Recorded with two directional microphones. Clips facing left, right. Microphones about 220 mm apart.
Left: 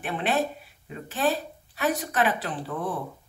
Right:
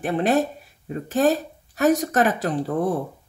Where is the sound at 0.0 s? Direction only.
40° right (ahead or behind).